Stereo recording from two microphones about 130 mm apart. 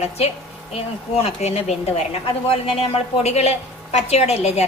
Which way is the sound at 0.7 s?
50° left (ahead or behind).